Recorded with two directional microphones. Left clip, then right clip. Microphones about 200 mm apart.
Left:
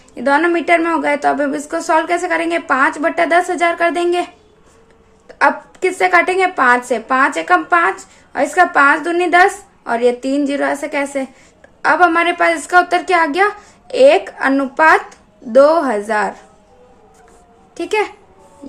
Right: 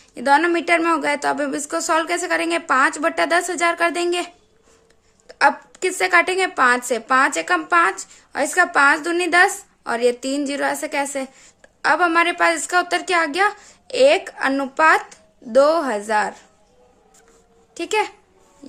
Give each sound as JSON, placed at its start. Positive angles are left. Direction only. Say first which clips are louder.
{"t": 0.1, "sound": "a woman's voice", "louder": "left 2 dB", "side_deg": -40}
{"t": 5.3, "sound": "a woman's voice", "louder": "left 3 dB", "side_deg": -35}
{"t": 17.7, "sound": "a woman's voice", "louder": "left 4 dB", "side_deg": -30}